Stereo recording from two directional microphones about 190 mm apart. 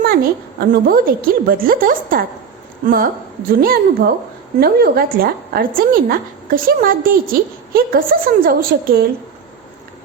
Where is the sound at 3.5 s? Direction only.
50° right (ahead or behind).